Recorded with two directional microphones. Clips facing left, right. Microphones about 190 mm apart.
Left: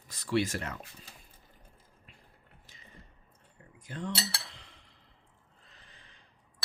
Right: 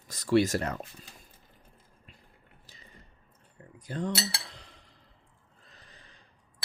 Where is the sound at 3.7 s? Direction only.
35° right (ahead or behind).